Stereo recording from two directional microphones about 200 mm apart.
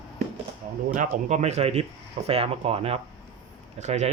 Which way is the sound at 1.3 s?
35° right (ahead or behind).